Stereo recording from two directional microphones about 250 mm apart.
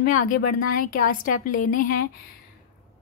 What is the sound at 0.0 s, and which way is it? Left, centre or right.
Speech, left.